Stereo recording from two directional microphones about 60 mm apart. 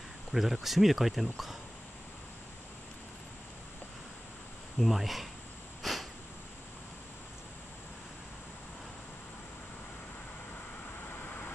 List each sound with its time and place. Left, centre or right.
0.3 s speech: centre
4.7 s speech: centre
5.8 s a sound: centre
11.1 s vehicle: left